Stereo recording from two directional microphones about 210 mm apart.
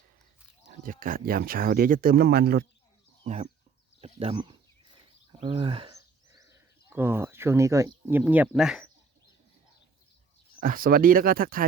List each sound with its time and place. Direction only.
0.7 s speech: 40° right (ahead or behind)
3.2 s speech: 35° right (ahead or behind); by 8.9 s 5° right (ahead or behind)
10.6 s speech: 40° right (ahead or behind)